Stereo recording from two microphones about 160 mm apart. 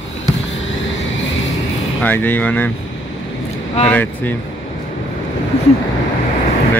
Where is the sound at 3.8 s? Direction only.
10° left (ahead or behind).